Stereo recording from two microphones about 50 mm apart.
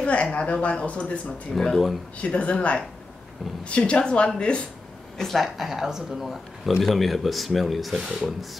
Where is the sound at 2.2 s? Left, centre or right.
Left.